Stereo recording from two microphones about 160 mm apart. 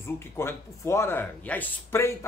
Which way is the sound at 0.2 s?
15° left (ahead or behind).